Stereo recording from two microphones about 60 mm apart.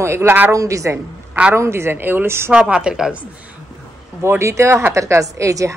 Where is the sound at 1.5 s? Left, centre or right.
Right.